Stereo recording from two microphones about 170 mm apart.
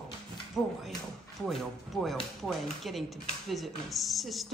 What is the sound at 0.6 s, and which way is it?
Speech, centre (ahead or behind).